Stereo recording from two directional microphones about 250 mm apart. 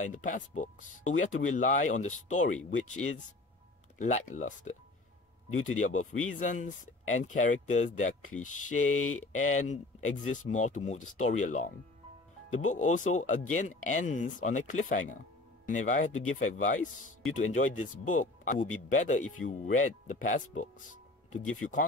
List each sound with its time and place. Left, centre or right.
0.0 s speech: left
5.8 s speech: left